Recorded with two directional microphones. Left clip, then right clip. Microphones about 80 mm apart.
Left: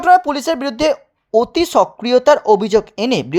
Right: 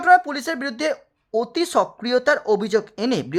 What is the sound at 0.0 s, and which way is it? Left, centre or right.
A woman's voice, left.